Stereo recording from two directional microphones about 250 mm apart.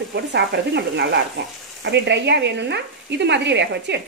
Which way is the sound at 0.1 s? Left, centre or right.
Right.